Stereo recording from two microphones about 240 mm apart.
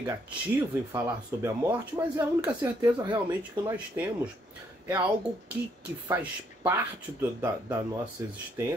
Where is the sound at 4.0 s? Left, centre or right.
Centre.